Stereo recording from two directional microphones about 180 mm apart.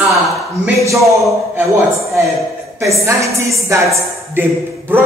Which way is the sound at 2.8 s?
15° right (ahead or behind).